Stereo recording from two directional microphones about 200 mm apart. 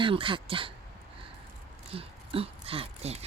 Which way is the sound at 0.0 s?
25° right (ahead or behind).